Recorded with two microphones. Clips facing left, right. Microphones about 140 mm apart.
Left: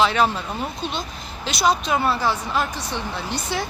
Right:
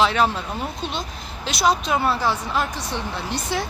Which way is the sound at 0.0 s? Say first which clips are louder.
Even; centre (ahead or behind).